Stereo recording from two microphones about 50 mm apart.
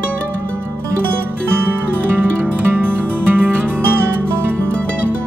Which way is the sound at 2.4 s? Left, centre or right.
Right.